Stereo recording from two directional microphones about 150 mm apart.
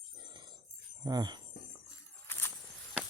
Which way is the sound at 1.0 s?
30° right (ahead or behind).